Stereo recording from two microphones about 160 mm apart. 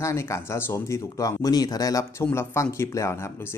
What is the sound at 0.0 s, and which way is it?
Speech, 20° left (ahead or behind).